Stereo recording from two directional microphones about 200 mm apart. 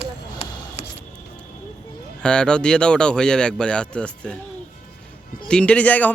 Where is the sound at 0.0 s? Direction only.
30° left (ahead or behind).